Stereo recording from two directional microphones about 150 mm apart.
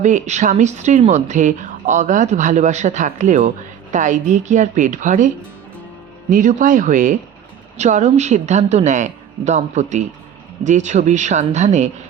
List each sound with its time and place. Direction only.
0.0 s a woman's voice: 55° right (ahead or behind)
6.3 s a woman's voice: 60° right (ahead or behind)